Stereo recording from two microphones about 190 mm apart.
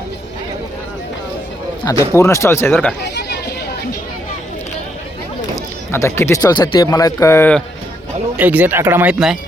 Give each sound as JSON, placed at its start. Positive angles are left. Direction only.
{"t": 2.1, "sound": "speech", "side_deg": 15}
{"t": 3.0, "sound": "a sound", "side_deg": 60}
{"t": 5.9, "sound": "speech", "side_deg": 15}
{"t": 8.4, "sound": "speech", "side_deg": -10}